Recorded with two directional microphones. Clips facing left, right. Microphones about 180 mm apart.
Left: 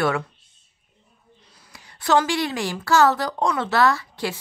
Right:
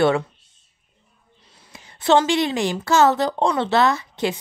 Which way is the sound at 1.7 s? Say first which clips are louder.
Right 4 dB; 25° right (ahead or behind).